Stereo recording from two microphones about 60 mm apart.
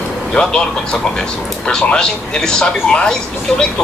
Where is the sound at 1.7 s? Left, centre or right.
Centre.